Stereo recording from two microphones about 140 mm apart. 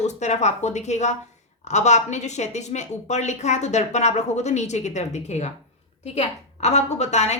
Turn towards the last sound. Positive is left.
turn(degrees=55)  # may be behind; listen again after turning